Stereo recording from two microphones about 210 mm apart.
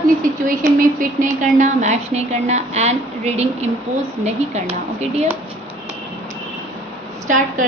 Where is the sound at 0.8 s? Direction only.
40° right (ahead or behind).